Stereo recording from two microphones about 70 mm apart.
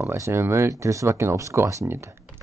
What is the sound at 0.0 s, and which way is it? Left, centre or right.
Speech, right.